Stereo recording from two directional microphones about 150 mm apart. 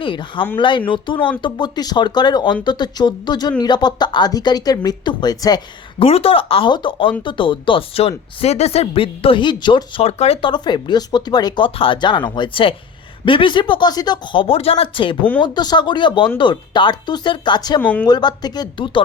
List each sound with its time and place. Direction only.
0.0 s speech: 35° left (ahead or behind)
6.0 s speech: 40° left (ahead or behind)
10.5 s speech: 30° left (ahead or behind)
17.7 s speech: 10° left (ahead or behind)
18.0 s speech: 30° left (ahead or behind)